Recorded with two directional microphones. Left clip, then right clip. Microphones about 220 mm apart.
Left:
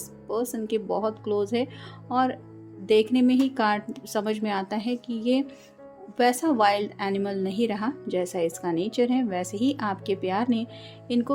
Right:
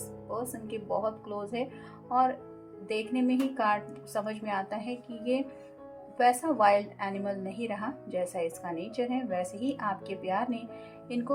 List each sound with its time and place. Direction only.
0.3 s a woman's voice: 45° left (ahead or behind)